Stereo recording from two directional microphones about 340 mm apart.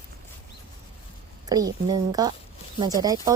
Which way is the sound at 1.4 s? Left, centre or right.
Centre.